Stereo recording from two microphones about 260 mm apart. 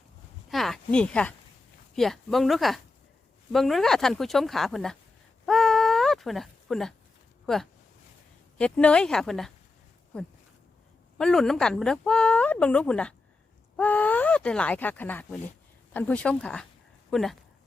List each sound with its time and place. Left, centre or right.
0.5 s speech: centre
5.5 s baby cry: centre
7.4 s speech: centre